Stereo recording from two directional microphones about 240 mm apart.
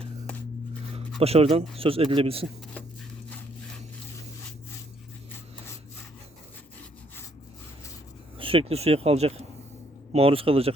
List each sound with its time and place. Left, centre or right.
1.2 s speech: right
8.4 s speech: right